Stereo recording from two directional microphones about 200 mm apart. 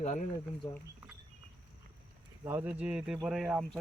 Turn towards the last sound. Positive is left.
turn(degrees=0)  # may be behind; listen again after turning